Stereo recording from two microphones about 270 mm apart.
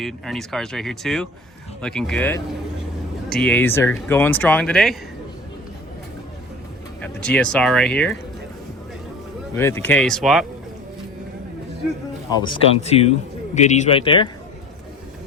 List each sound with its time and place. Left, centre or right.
0.0 s speech: centre
7.0 s speech: centre
9.6 s speech: centre
12.4 s speech: centre